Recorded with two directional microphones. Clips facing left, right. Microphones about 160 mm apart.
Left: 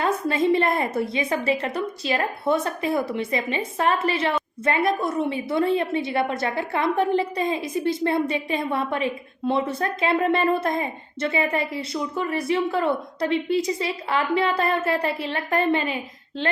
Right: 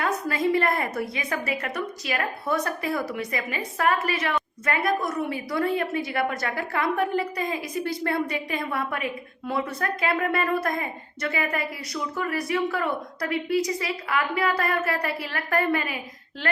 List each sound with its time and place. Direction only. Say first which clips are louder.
0.0 s a woman's voice: left 3 dB; 25° left (ahead or behind)